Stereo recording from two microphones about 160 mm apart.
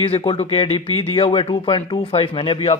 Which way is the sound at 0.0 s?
35° left (ahead or behind).